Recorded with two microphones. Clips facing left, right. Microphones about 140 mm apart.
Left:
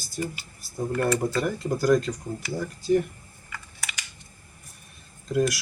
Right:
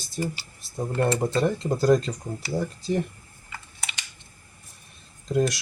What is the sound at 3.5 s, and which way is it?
Computer keyboard, 25° right (ahead or behind).